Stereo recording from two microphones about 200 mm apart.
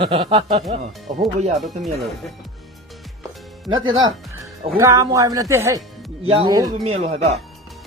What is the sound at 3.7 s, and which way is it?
Speech, 75° right (ahead or behind).